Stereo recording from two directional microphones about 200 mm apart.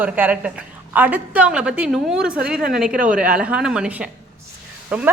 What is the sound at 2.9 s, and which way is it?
Speech, 45° right (ahead or behind).